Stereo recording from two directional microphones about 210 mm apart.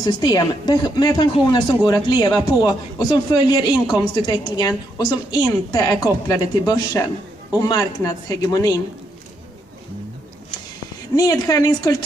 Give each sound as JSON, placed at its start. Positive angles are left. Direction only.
{"t": 0.0, "sound": "a man's voice", "side_deg": 20}
{"t": 11.1, "sound": "speech", "side_deg": 20}